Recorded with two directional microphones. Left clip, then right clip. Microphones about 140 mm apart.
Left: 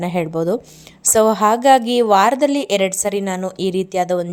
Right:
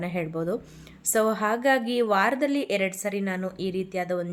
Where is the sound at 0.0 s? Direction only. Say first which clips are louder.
Left 10 dB; 55° left (ahead or behind).